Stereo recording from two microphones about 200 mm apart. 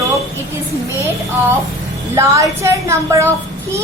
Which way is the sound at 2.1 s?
15° right (ahead or behind).